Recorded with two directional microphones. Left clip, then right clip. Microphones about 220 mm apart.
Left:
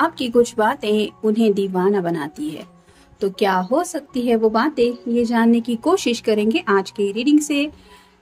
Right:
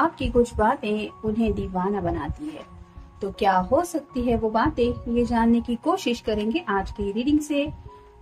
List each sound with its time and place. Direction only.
0.0 s a woman's voice: 40° left (ahead or behind)